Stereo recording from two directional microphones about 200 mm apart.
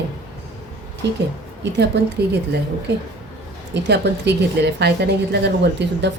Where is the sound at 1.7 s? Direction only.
55° right (ahead or behind).